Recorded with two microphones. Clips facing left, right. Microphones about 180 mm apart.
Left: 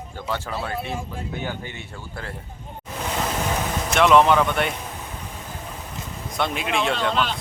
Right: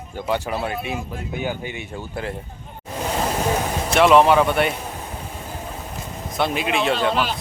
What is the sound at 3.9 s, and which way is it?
Speech, 5° right (ahead or behind).